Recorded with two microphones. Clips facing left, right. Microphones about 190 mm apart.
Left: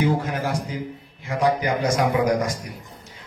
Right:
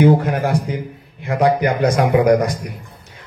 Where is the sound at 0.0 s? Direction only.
60° right (ahead or behind).